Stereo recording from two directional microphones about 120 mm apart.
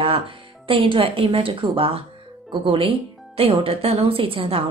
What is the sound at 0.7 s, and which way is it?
Speech, 45° right (ahead or behind).